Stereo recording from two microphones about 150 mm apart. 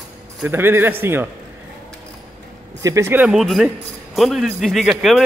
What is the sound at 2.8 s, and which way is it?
Speech, 20° right (ahead or behind).